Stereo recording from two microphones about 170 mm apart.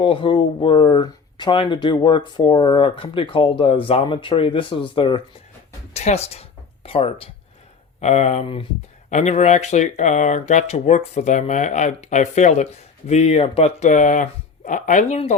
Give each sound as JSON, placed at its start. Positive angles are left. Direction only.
{"t": 0.0, "sound": "speech", "side_deg": 30}
{"t": 5.9, "sound": "speech", "side_deg": 40}